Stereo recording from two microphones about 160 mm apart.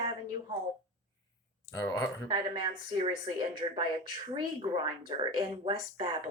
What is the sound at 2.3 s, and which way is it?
Speech, 30° right (ahead or behind).